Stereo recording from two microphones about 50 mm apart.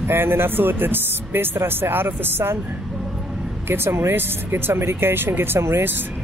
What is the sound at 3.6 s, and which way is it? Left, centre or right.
Speech, right.